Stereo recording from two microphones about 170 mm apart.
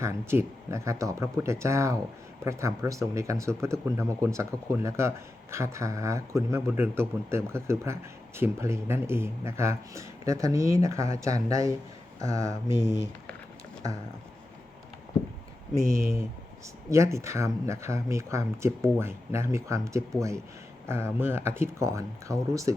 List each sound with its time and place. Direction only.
0.0 s speech: 15° right (ahead or behind)
15.8 s speech: 15° right (ahead or behind)